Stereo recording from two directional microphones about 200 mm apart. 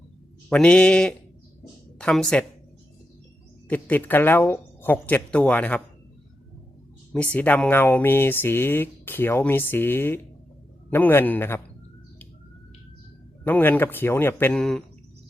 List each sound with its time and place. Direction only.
0.5 s speech: 5° left (ahead or behind)
3.7 s speech: 10° left (ahead or behind)
7.1 s speech: 5° left (ahead or behind)
13.4 s speech: 10° left (ahead or behind)